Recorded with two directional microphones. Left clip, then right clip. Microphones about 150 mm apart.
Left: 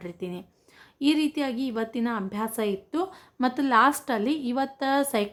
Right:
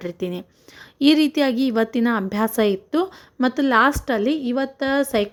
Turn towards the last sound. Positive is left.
turn(degrees=-20)  # may be behind; listen again after turning